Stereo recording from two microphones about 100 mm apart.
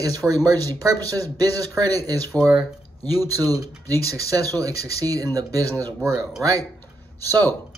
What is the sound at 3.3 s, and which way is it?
Speech, 40° right (ahead or behind).